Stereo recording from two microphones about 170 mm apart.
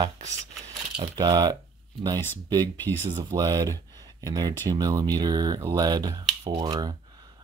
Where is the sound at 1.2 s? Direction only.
25° right (ahead or behind).